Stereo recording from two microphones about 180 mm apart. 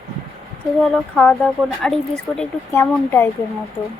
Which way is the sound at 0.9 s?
5° left (ahead or behind).